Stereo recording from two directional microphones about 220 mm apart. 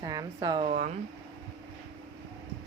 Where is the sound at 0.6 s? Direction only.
30° right (ahead or behind).